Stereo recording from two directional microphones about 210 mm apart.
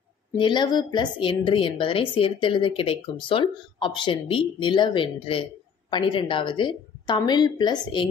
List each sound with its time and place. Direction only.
0.4 s a woman's voice: 20° left (ahead or behind)